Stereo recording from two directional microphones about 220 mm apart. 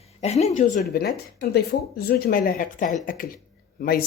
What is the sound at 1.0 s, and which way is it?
Speech, 45° left (ahead or behind).